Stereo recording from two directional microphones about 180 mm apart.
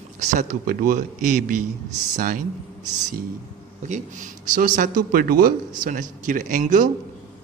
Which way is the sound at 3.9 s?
45° right (ahead or behind).